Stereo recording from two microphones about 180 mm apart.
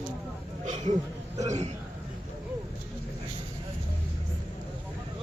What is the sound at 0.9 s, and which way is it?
Speech, 45° right (ahead or behind).